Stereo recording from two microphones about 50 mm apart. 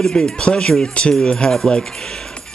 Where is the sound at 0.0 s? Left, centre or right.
Centre.